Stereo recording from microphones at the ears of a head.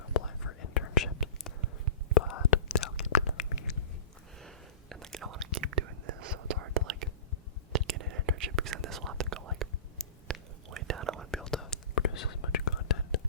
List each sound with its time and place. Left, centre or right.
0.0 s whispering: left
5.2 s whispering: right
10.7 s whispering: right
11.6 s whispering: left